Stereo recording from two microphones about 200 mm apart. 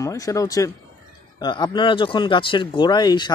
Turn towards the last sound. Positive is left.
turn(degrees=20)  # may be behind; listen again after turning